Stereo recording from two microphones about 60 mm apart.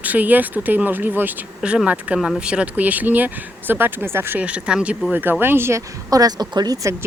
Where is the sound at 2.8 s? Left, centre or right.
Right.